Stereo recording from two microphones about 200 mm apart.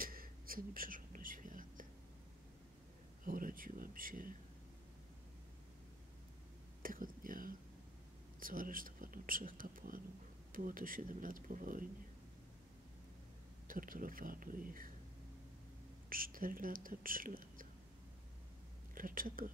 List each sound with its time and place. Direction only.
0.0 s whispering: 45° right (ahead or behind)
3.3 s a sound: 45° right (ahead or behind)
6.8 s whispering: 45° right (ahead or behind)
8.4 s speech: 45° right (ahead or behind)
13.7 s speech: 45° right (ahead or behind)
16.1 s speech: 45° right (ahead or behind)
18.9 s speech: 45° right (ahead or behind)